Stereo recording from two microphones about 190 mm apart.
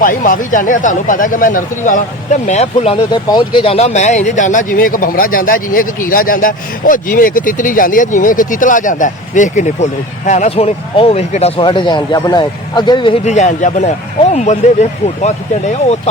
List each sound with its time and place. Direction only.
0.0 s speech: 45° left (ahead or behind)
3.1 s speech: 20° left (ahead or behind)